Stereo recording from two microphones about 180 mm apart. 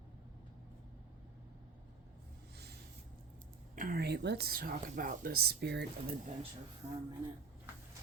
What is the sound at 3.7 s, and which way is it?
A woman's voice, 55° right (ahead or behind).